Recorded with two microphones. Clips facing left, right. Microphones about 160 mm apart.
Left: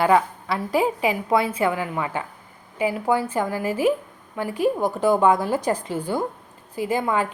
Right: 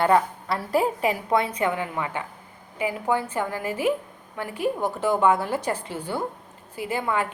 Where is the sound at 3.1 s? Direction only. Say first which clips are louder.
Left 2 dB; 10° left (ahead or behind).